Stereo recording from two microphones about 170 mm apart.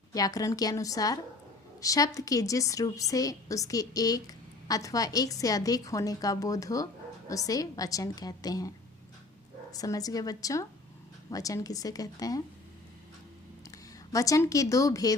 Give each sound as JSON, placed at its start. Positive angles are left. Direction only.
{"t": 0.1, "sound": "a woman's voice", "side_deg": 20}
{"t": 9.7, "sound": "a woman's voice", "side_deg": 20}
{"t": 13.7, "sound": "speech", "side_deg": 20}